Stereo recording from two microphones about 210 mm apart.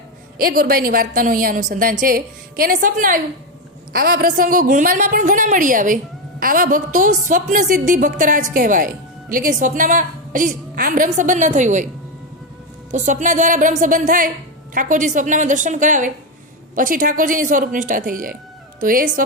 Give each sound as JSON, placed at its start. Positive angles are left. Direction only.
{"t": 0.3, "sound": "a woman's voice", "side_deg": -45}
{"t": 12.9, "sound": "a woman's voice", "side_deg": -35}